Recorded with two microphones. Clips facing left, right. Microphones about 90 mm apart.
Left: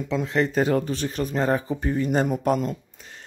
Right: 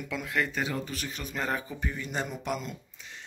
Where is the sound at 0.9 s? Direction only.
35° left (ahead or behind).